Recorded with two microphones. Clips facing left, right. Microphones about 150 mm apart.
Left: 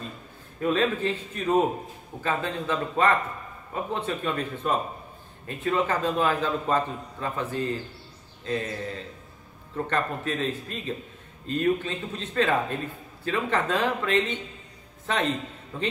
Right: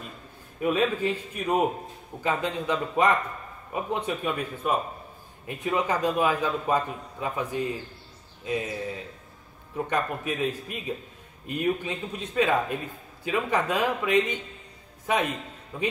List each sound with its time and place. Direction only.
0.6 s a man's voice: 10° right (ahead or behind)